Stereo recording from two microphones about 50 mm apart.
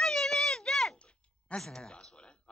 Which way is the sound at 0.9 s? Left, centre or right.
Left.